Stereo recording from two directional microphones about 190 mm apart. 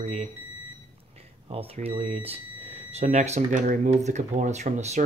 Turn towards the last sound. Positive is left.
turn(degrees=-40)  # may be behind; listen again after turning